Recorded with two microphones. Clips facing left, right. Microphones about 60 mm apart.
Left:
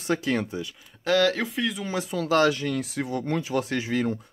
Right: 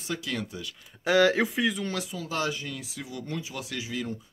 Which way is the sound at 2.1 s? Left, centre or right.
Left.